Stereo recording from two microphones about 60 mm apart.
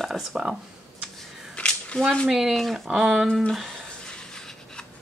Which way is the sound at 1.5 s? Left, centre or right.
Centre.